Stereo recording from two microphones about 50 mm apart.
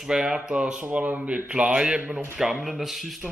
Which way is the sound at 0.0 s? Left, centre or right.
Centre.